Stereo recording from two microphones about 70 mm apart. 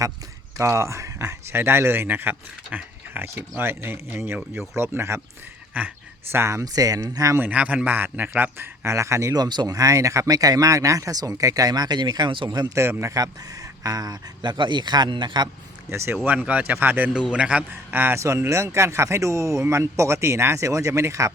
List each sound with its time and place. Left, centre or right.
0.5 s speech: right
1.5 s speech: right
5.7 s a man's voice: centre
6.3 s speech: right
6.7 s speech: right
7.3 s a man's voice: right
9.3 s speech: right
12.7 s speech: right
13.1 s speech: right
15.9 s speech: right
16.5 s a man's voice: right
17.3 s a man's voice: centre
18.2 s speech: right